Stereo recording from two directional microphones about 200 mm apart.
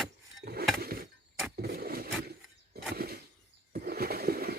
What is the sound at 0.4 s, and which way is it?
Dishes, 50° right (ahead or behind).